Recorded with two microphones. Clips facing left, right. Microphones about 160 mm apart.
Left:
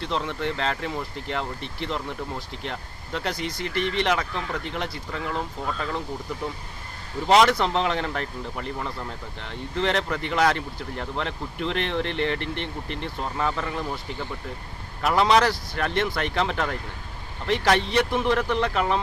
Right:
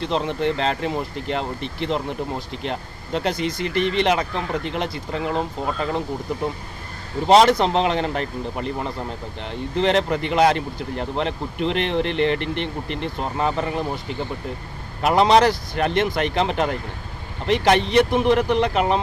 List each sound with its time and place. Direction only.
0.0 s speech: 20° right (ahead or behind)
7.3 s speech: 25° right (ahead or behind)